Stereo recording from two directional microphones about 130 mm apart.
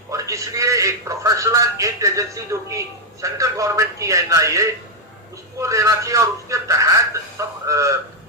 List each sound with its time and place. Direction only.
0.1 s a man's voice: 25° right (ahead or behind)